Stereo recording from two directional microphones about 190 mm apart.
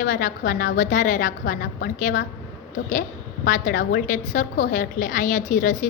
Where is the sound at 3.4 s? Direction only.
45° left (ahead or behind).